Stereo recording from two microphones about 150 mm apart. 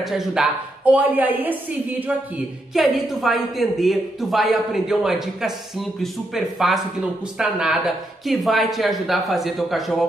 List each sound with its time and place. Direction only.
0.0 s a woman's voice: centre (ahead or behind)